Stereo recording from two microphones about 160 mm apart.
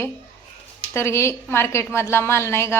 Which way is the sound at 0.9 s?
15° left (ahead or behind).